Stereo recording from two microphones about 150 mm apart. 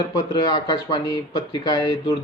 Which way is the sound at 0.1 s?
25° left (ahead or behind).